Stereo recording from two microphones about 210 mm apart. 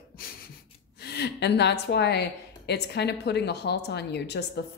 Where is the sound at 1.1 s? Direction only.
50° left (ahead or behind).